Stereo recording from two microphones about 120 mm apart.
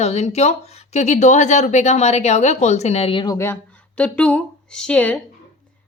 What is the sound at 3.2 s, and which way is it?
Speech, 25° left (ahead or behind).